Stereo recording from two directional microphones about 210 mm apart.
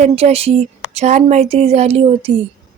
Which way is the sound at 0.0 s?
30° right (ahead or behind).